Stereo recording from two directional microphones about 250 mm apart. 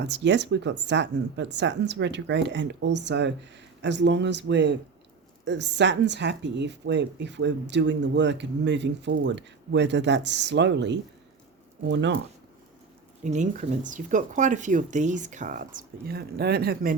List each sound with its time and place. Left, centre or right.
0.0 s speech: right
13.2 s speech: right